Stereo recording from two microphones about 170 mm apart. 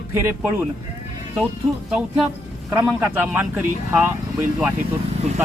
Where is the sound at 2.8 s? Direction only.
10° right (ahead or behind).